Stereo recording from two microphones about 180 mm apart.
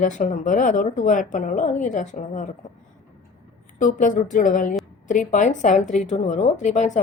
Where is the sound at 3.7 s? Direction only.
45° left (ahead or behind).